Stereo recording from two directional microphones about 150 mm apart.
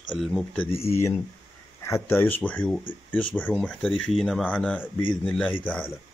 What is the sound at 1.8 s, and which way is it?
Speech, 15° left (ahead or behind).